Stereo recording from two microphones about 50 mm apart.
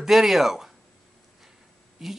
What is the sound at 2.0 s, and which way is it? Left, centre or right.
Speech, centre.